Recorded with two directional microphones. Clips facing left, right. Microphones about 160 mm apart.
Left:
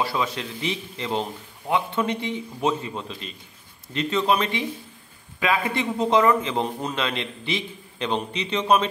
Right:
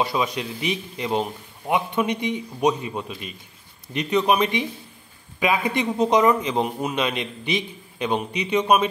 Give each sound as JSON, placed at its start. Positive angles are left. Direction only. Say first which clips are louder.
{"t": 0.0, "sound": "a man's voice", "louder": "right 2 dB", "side_deg": -15}